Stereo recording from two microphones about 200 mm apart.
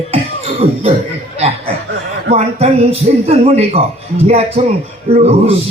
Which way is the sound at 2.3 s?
30° right (ahead or behind).